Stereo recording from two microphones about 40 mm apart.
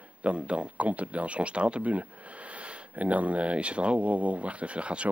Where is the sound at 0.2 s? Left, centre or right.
Right.